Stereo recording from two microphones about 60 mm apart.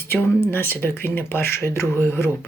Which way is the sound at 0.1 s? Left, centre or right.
Left.